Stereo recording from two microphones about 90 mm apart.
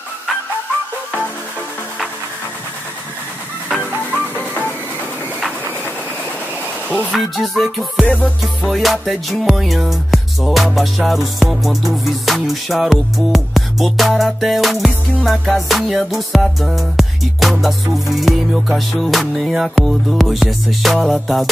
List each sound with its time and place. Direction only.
3.9 s music: 20° right (ahead or behind)
7.1 s music: centre (ahead or behind)
8.0 s music: 15° left (ahead or behind)
8.4 s music: centre (ahead or behind)